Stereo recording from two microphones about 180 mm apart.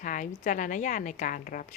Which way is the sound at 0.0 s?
45° left (ahead or behind).